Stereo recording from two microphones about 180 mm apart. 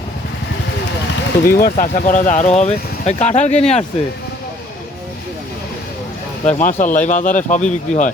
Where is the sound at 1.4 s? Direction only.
55° left (ahead or behind); by 3.8 s 35° left (ahead or behind).